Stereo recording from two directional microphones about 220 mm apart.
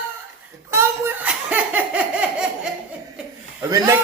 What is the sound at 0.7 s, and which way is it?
Belly laugh, 10° right (ahead or behind).